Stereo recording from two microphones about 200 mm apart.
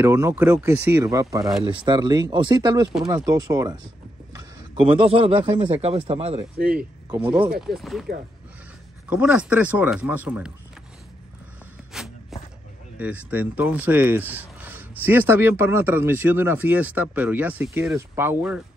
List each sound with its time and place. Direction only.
0.0 s a man's voice: 10° right (ahead or behind); by 6.4 s 30° right (ahead or behind)
7.1 s speech: 10° right (ahead or behind)
9.1 s speech: 5° right (ahead or behind)
11.9 s a sound: centre (ahead or behind)
13.0 s speech: 10° right (ahead or behind)